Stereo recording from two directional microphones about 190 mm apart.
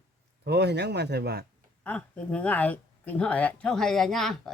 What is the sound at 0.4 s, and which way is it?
Speech, 60° right (ahead or behind).